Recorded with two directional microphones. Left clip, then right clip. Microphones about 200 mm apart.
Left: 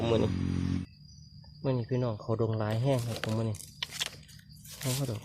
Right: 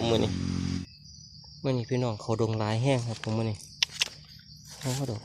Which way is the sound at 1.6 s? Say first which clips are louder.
Right 2 dB; 20° right (ahead or behind).